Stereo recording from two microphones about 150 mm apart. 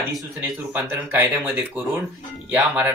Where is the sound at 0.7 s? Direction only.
15° right (ahead or behind).